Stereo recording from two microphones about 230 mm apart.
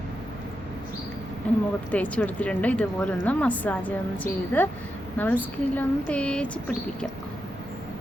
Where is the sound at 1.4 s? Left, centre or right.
Centre.